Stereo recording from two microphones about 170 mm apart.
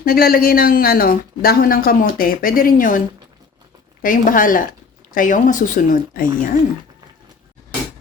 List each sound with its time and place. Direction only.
0.0 s speech: 60° left (ahead or behind)
4.0 s speech: 50° left (ahead or behind)